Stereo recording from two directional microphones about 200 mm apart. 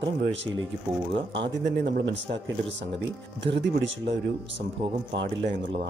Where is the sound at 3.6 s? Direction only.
65° right (ahead or behind).